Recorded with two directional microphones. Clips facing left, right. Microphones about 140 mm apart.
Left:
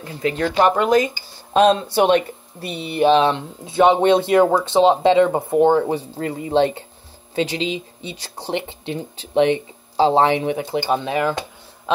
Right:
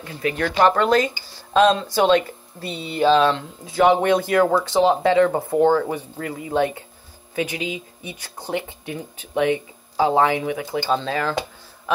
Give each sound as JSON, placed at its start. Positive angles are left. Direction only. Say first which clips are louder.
{"t": 0.0, "sound": "speech", "louder": "left 2 dB", "side_deg": 25}